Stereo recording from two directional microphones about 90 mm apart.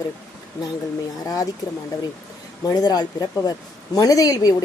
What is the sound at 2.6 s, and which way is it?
Speech, 45° left (ahead or behind).